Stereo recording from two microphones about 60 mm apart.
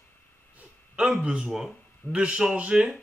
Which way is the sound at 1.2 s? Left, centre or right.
Centre.